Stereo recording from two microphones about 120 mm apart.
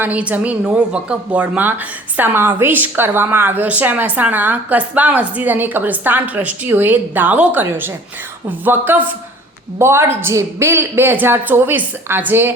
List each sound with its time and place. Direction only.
0.0 s a woman's voice: 10° right (ahead or behind)